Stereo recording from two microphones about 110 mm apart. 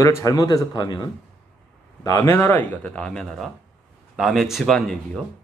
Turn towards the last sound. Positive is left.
turn(degrees=5)  # may be behind; listen again after turning